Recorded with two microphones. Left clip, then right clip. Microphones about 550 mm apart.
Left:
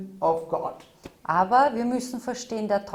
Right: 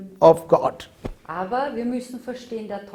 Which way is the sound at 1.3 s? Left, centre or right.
Left.